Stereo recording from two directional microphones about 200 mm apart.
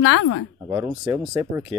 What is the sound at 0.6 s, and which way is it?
Speech, 20° right (ahead or behind).